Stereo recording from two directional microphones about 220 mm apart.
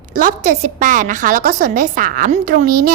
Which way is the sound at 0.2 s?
35° right (ahead or behind).